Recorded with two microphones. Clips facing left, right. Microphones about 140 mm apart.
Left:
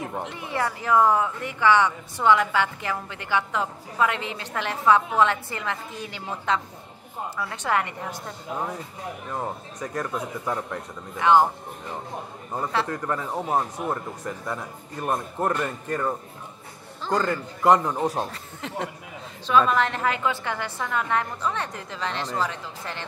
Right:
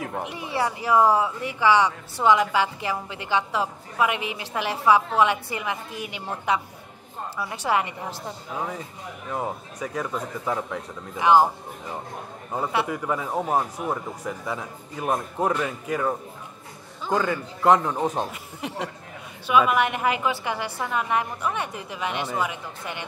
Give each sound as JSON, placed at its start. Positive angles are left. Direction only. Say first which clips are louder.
{"t": 0.2, "sound": "speech", "louder": "right 2 dB", "side_deg": -15}
{"t": 8.3, "sound": "a man's voice", "louder": "left 1 dB", "side_deg": 0}
{"t": 11.1, "sound": "a man's voice", "louder": "right 1 dB", "side_deg": -15}
{"t": 18.3, "sound": "speech", "louder": "right 1 dB", "side_deg": -15}